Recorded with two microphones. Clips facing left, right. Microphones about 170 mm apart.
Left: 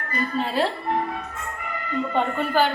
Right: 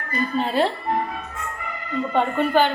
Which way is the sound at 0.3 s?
Centre (ahead or behind).